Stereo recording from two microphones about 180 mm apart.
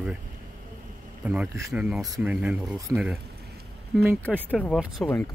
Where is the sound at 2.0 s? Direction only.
20° right (ahead or behind).